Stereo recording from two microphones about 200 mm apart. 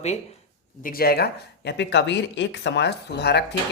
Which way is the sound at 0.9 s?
50° left (ahead or behind).